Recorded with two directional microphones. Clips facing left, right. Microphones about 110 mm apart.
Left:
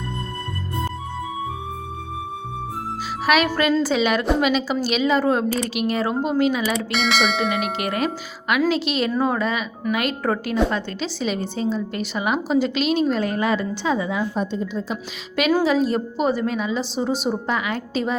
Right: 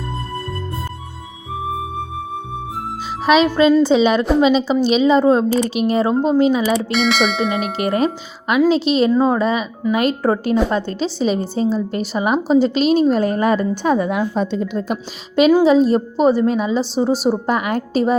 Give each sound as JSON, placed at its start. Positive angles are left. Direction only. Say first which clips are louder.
{"t": 3.2, "sound": "a woman's voice", "louder": "right 6 dB", "side_deg": -25}
{"t": 6.7, "sound": "speech", "louder": "right 5 dB", "side_deg": 0}
{"t": 7.5, "sound": "a woman's voice", "louder": "right 5 dB", "side_deg": -35}
{"t": 15.4, "sound": "a woman's voice", "louder": "right 7 dB", "side_deg": -25}